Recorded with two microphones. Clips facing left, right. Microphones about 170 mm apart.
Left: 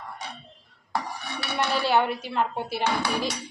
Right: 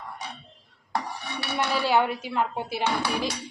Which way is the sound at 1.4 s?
10° right (ahead or behind).